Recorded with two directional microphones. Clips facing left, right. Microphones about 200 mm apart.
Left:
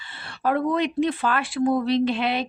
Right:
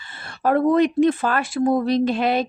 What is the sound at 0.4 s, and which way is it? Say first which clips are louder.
Speech: right 6 dB; 45° right (ahead or behind).